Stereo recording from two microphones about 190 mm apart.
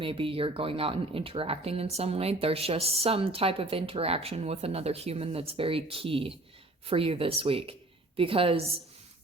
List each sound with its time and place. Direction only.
0.0 s speech: 30° right (ahead or behind)